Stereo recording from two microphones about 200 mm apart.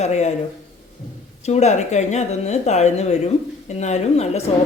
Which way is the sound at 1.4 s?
35° left (ahead or behind).